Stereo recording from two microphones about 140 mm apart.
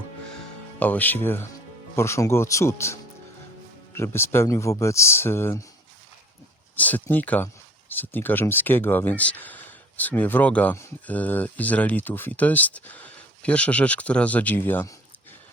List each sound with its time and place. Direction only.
0.8 s speech: 10° left (ahead or behind)
6.7 s speech: 10° left (ahead or behind)